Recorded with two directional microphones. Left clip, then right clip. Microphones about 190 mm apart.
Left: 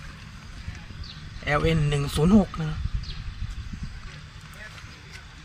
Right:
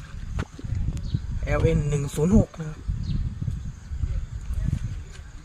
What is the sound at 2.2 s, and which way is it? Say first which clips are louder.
Speech: even; 15° left (ahead or behind).